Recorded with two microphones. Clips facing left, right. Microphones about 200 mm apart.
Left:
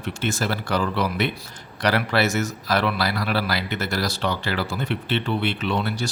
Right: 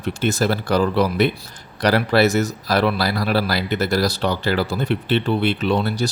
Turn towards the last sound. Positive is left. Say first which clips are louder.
# right 5 dB
turn(degrees=-35)  # may be behind; listen again after turning